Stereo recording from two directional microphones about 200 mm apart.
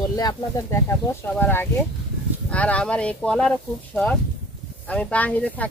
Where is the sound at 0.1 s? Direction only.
20° left (ahead or behind).